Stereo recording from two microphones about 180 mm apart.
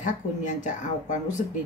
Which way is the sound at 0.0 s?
45° left (ahead or behind).